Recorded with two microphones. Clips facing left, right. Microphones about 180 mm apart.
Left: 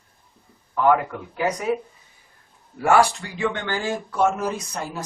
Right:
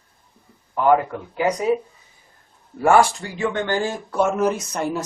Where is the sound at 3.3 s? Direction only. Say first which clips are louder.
Right 4 dB; 45° right (ahead or behind).